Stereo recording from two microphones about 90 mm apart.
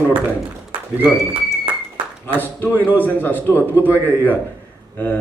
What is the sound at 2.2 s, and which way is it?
A man's voice, 20° left (ahead or behind).